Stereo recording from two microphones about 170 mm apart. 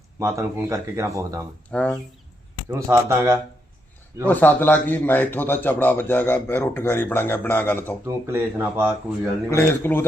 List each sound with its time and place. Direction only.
0.2 s speech: 15° right (ahead or behind)
1.7 s speech: 5° left (ahead or behind)
2.6 s speech: 15° right (ahead or behind)
4.3 s speech: 10° left (ahead or behind)
8.0 s speech: 15° right (ahead or behind)
9.5 s speech: 15° left (ahead or behind)